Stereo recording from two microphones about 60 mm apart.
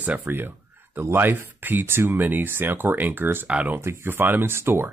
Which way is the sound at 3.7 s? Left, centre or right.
Right.